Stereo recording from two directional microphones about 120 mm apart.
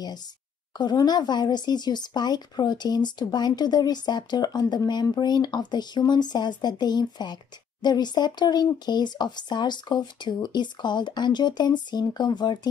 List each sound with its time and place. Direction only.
0.7 s speech: 35° left (ahead or behind)